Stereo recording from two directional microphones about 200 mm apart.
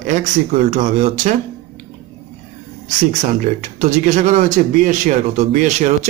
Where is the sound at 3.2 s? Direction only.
40° right (ahead or behind).